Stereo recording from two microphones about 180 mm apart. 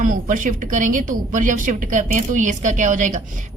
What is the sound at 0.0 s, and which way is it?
Speech, 45° right (ahead or behind).